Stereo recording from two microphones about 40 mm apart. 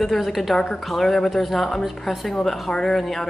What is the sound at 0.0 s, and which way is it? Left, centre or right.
A woman's voice, centre.